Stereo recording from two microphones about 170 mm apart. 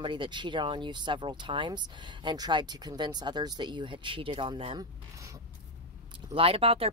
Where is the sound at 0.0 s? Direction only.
30° right (ahead or behind).